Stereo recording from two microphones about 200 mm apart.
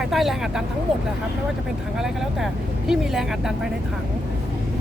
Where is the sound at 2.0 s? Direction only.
Centre (ahead or behind).